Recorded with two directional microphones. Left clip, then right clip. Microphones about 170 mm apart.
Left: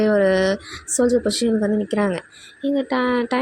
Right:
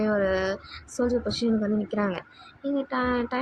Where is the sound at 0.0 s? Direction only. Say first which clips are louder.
Left 8 dB; 40° left (ahead or behind).